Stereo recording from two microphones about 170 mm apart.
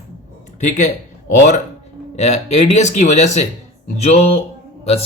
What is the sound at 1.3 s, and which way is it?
Speech, 45° left (ahead or behind).